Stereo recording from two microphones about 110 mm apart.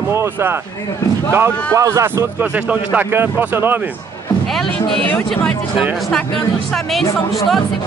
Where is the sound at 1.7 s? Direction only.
25° right (ahead or behind).